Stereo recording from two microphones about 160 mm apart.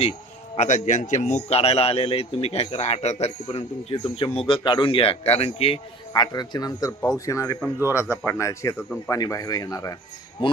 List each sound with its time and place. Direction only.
0.5 s a man's voice: 50° left (ahead or behind); by 9.9 s 20° left (ahead or behind)